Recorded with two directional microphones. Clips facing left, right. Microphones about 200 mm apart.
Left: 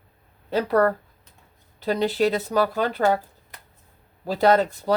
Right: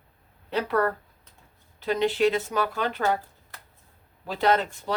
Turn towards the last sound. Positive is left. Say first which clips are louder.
# left 5 dB
turn(degrees=40)  # may be behind; listen again after turning